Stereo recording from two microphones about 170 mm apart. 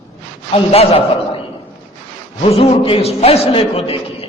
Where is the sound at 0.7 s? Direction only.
35° left (ahead or behind).